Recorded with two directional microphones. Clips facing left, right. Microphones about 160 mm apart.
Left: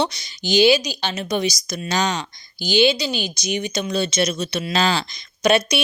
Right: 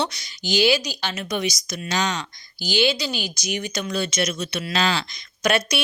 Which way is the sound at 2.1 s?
20° left (ahead or behind).